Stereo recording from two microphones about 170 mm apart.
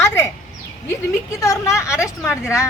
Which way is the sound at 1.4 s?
15° left (ahead or behind).